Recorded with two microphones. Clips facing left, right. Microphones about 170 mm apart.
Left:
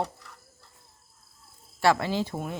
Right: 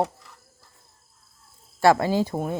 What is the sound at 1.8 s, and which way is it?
Speech, 45° right (ahead or behind).